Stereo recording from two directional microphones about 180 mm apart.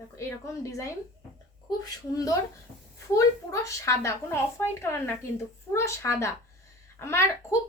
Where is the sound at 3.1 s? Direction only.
15° left (ahead or behind).